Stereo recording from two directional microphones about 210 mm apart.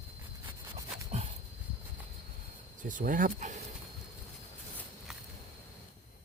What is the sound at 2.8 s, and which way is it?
Speech, 40° right (ahead or behind).